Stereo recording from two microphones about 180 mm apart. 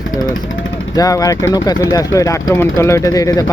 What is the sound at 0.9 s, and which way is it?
Speech, 20° left (ahead or behind).